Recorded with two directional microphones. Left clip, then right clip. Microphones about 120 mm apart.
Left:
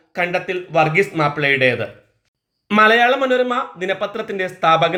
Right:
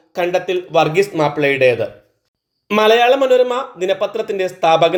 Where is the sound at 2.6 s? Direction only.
15° right (ahead or behind).